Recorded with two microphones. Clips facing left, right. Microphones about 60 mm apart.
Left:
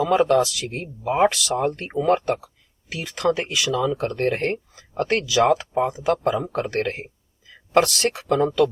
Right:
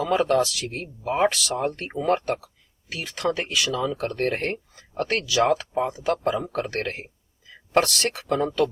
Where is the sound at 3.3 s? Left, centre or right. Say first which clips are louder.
Left 2 dB; left.